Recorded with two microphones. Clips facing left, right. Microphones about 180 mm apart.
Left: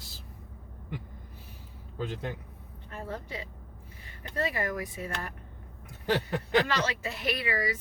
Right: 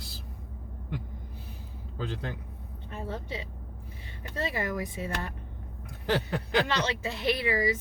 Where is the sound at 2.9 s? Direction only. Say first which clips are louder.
Right 2 dB; 20° right (ahead or behind).